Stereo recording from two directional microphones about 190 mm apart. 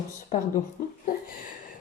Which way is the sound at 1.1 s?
45° left (ahead or behind).